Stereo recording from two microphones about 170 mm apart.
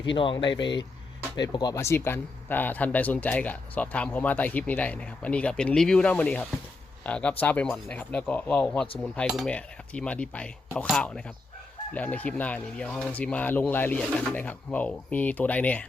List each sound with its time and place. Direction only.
0.2 s speech: 30° left (ahead or behind)
0.6 s speech: 90° left
1.4 s speech: 25° left (ahead or behind)